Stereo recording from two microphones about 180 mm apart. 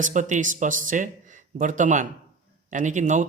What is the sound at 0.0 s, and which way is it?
Speech, 45° right (ahead or behind).